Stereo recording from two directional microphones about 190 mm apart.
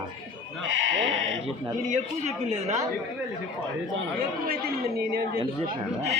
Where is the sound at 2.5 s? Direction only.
35° right (ahead or behind).